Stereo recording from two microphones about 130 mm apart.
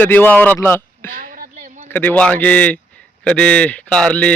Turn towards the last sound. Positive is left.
turn(degrees=10)  # may be behind; listen again after turning